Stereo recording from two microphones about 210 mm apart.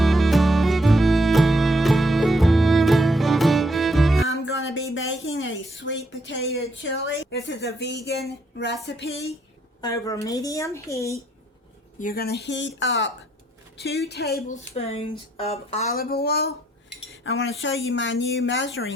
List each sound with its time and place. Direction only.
0.0 s music: centre (ahead or behind)
4.3 s a sound: 65° left (ahead or behind)
6.8 s speech: 65° left (ahead or behind)
9.8 s speech: 15° left (ahead or behind)
11.9 s speech: 45° left (ahead or behind)
15.9 s speech: 45° left (ahead or behind)
17.2 s speech: 65° left (ahead or behind)